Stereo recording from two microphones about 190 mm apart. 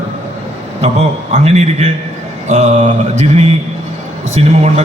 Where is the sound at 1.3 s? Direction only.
35° right (ahead or behind).